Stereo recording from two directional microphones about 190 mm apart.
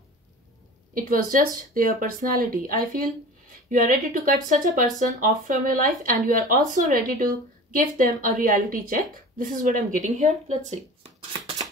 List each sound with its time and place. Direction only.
0.9 s a woman's voice: 45° right (ahead or behind)